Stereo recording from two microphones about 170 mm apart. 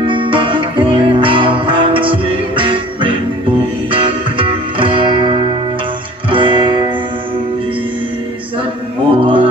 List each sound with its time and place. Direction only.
0.0 s music: 30° right (ahead or behind)
6.3 s guitar: 30° right (ahead or behind)
9.1 s music: 30° right (ahead or behind)